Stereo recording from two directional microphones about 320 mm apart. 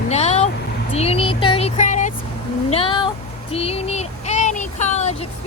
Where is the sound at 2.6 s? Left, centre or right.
Centre.